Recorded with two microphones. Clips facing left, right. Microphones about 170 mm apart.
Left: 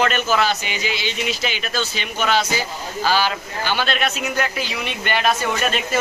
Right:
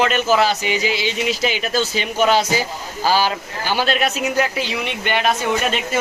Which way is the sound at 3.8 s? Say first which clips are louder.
Right 6 dB; 40° right (ahead or behind).